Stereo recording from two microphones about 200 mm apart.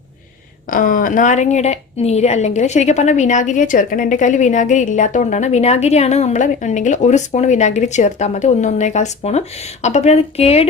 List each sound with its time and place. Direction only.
0.7 s a woman's voice: 45° left (ahead or behind)